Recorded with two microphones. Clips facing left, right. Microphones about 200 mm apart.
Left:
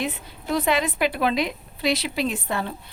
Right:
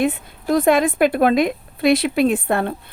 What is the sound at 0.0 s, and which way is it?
Speech, 50° right (ahead or behind).